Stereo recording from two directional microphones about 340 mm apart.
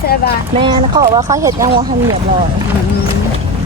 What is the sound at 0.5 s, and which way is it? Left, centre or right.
Speech, centre.